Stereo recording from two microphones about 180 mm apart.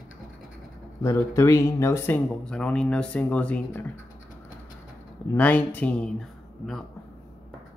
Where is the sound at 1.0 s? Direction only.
15° left (ahead or behind).